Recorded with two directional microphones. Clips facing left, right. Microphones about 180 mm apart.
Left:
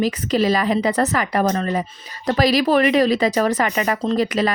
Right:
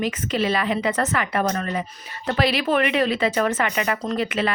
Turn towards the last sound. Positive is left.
turn(degrees=40)  # may be behind; listen again after turning